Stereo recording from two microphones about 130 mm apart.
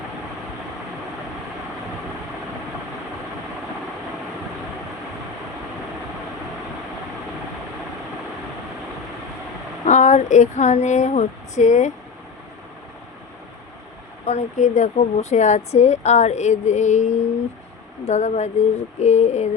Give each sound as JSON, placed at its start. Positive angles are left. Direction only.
{"t": 9.8, "sound": "speech", "side_deg": 70}
{"t": 14.3, "sound": "a woman's voice", "side_deg": 60}